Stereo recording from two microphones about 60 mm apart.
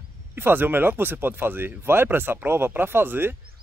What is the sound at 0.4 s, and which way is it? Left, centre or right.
Speech, right.